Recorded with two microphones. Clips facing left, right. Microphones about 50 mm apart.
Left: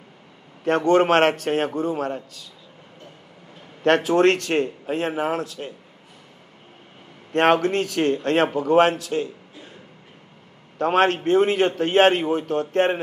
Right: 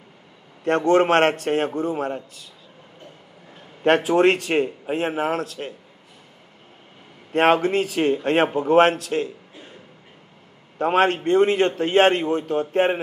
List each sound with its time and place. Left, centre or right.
0.7 s a man's voice: centre
3.8 s a man's voice: centre
7.3 s a man's voice: centre; by 8.7 s right
8.7 s a man's voice: centre
10.8 s a man's voice: centre
12.5 s a man's voice: centre